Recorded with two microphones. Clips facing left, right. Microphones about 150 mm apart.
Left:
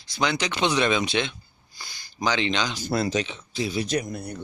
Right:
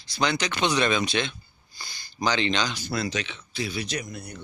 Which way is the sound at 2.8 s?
45° left (ahead or behind).